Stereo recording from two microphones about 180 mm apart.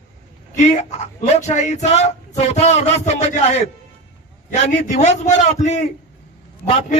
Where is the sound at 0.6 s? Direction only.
40° left (ahead or behind).